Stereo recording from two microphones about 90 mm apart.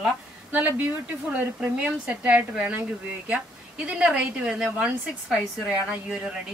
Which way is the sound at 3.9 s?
10° right (ahead or behind).